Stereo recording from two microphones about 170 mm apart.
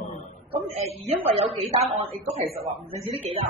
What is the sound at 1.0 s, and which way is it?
A woman's voice, 35° right (ahead or behind).